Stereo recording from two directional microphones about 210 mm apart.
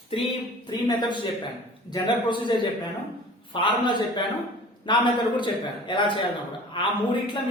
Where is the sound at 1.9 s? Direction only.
20° left (ahead or behind).